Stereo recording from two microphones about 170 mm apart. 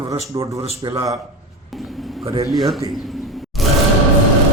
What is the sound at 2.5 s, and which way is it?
Speech, centre (ahead or behind).